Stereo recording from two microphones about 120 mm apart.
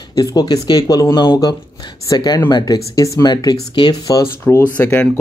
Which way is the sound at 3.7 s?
40° left (ahead or behind).